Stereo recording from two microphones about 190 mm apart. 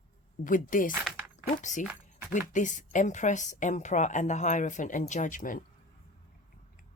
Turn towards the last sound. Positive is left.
turn(degrees=45)  # may be behind; listen again after turning